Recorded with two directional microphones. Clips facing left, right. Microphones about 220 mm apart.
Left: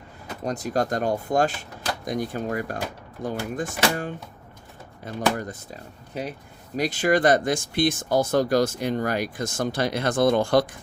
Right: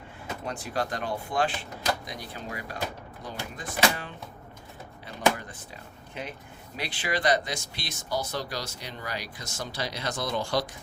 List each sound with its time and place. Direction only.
0.4 s speech: 40° left (ahead or behind)